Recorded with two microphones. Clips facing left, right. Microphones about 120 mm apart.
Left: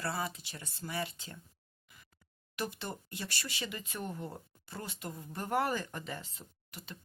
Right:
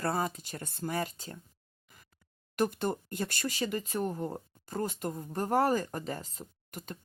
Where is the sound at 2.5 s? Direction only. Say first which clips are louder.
Right 9 dB; 45° right (ahead or behind).